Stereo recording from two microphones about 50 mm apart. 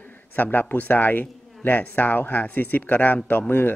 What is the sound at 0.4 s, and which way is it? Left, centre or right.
A man's voice, left.